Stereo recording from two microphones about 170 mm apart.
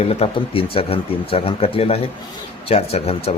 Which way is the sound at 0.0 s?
35° left (ahead or behind).